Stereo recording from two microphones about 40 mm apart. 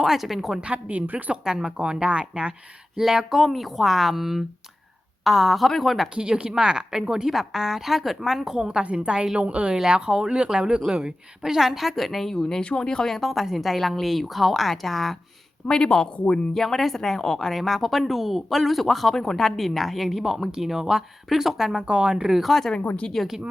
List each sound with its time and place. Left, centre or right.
0.0 s a woman's voice: centre
0.6 s speech: right
1.3 s a woman's voice: centre
2.9 s speech: centre
6.1 s a woman's voice: right; by 8.5 s centre
8.5 s a woman's voice: right; by 12.6 s centre
12.6 s speech: left; by 15.2 s centre
15.6 s speech: left
16.6 s a woman's voice: centre
21.8 s a woman's voice: right
22.1 s a woman's voice: centre
22.4 s speech: centre